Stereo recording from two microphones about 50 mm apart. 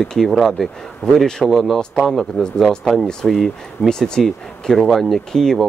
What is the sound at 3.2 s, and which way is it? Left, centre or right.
Speech, centre.